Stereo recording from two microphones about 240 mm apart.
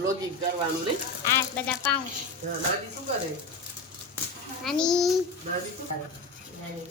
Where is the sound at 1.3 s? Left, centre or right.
Centre.